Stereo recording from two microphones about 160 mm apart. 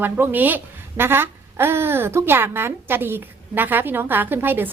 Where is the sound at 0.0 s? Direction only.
10° right (ahead or behind).